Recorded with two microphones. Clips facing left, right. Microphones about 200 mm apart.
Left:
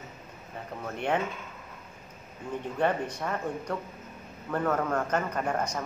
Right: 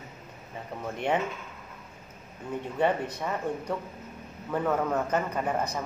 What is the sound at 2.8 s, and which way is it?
Speech, 10° right (ahead or behind).